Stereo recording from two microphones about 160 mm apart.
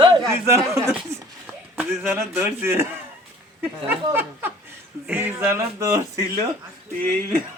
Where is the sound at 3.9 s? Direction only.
15° right (ahead or behind).